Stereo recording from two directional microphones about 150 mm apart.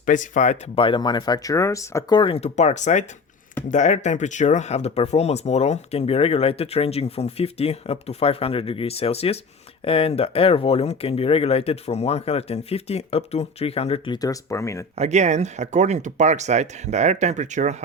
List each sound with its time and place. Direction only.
0.0 s speech: 60° left (ahead or behind)
0.8 s speech: 30° left (ahead or behind)
2.1 s speech: 35° left (ahead or behind); by 14.8 s 20° left (ahead or behind)
14.9 s speech: 50° right (ahead or behind)